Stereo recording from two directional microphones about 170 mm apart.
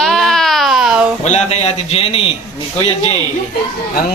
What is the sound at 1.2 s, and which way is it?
A man's voice, 45° left (ahead or behind).